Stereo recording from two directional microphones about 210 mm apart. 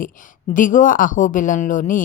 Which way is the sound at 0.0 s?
40° left (ahead or behind).